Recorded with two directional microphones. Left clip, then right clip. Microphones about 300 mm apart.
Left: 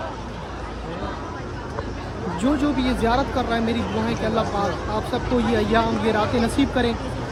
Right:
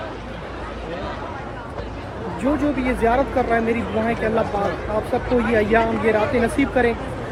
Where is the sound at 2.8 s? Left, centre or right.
Centre.